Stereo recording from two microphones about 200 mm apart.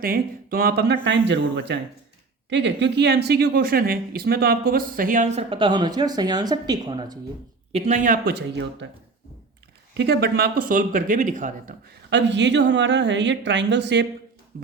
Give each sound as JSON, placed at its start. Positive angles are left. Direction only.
{"t": 0.0, "sound": "speech", "side_deg": -50}
{"t": 7.7, "sound": "speech", "side_deg": -35}
{"t": 10.0, "sound": "speech", "side_deg": -55}
{"t": 12.1, "sound": "speech", "side_deg": -60}